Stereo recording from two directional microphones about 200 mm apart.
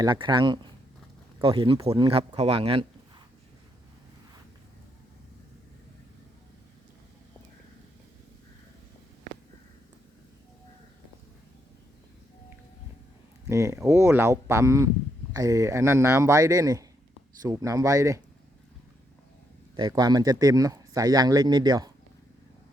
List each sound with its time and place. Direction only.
0.0 s speech: 25° right (ahead or behind)
13.5 s speech: 15° right (ahead or behind)
19.7 s speech: 20° right (ahead or behind)